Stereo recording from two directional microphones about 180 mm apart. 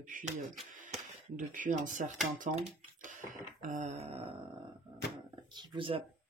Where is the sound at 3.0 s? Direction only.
45° right (ahead or behind).